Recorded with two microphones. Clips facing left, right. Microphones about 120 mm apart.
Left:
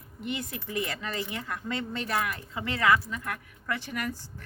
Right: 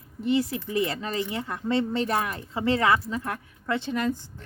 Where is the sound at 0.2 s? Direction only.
30° right (ahead or behind).